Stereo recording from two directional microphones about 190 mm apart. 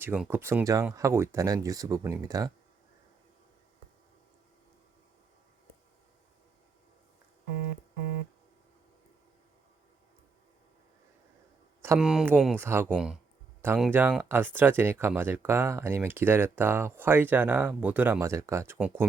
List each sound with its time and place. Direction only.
0.0 s speech: 10° right (ahead or behind)
11.9 s speech: 5° right (ahead or behind)